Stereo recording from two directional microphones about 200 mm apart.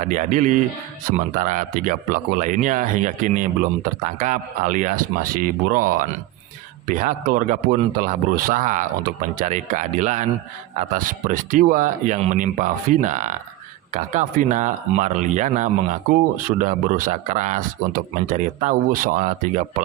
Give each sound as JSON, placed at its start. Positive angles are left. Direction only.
{"t": 0.0, "sound": "speech", "side_deg": -40}